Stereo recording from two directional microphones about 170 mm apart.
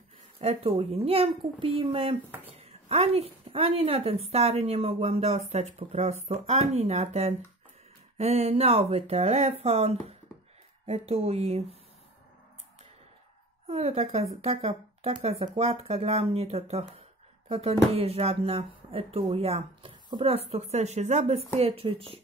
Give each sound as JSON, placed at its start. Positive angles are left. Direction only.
{"t": 0.4, "sound": "a woman's voice", "side_deg": -35}
{"t": 13.7, "sound": "a woman's voice", "side_deg": -40}